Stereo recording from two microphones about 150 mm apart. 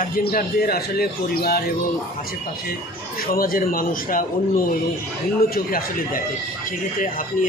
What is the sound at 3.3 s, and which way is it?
A man's voice, 75° left (ahead or behind).